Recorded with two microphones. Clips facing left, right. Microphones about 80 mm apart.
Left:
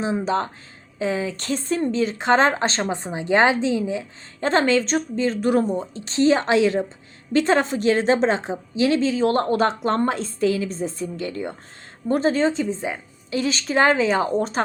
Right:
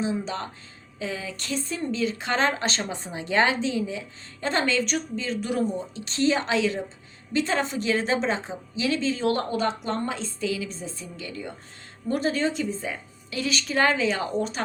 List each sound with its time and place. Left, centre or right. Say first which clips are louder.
0.0 s a woman's voice: left 6 dB; left
0.9 s a woman's voice: left 8 dB; left
12.0 s speech: left 5 dB; left